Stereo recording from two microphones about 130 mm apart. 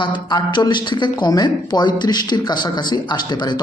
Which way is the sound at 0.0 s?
35° left (ahead or behind).